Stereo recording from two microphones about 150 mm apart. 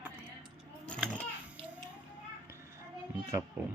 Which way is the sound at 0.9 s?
5° left (ahead or behind).